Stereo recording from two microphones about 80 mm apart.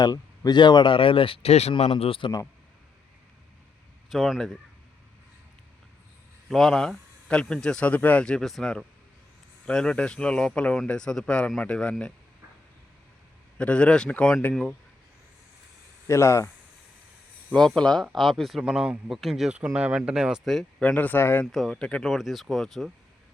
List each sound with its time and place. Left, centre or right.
0.0 s speech: left
4.1 s speech: centre
6.5 s speech: centre
9.6 s speech: centre
13.6 s speech: centre
14.5 s speech: centre
16.0 s speech: left
17.7 s speech: centre
20.4 s speech: centre
20.8 s speech: left
21.4 s speech: centre
21.8 s speech: centre
22.0 s speech: centre